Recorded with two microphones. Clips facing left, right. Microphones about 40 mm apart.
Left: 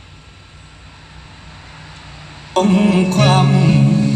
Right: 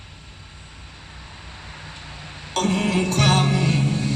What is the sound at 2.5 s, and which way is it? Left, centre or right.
Mantra, left.